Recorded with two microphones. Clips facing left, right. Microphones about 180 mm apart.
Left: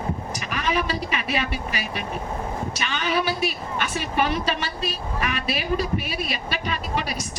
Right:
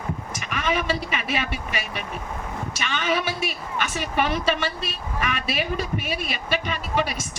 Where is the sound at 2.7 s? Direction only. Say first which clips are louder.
Right 2 dB; 40° left (ahead or behind).